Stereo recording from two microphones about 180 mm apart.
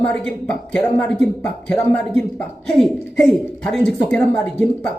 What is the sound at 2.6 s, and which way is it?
A man's voice, centre (ahead or behind).